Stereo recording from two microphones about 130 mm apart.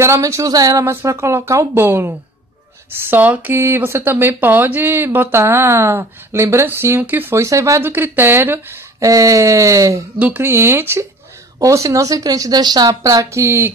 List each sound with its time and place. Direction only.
0.0 s speech: 20° right (ahead or behind)
10.1 s speech: 10° right (ahead or behind)